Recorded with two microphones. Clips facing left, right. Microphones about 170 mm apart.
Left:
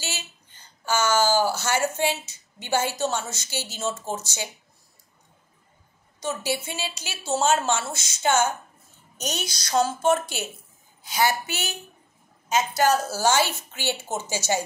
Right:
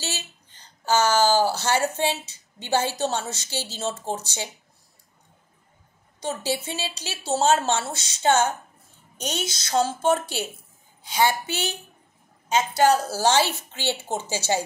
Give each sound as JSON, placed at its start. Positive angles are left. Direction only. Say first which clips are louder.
{"t": 0.8, "sound": "a woman's voice", "louder": "right 2 dB", "side_deg": -35}
{"t": 6.2, "sound": "a woman's voice", "louder": "right 1 dB", "side_deg": -30}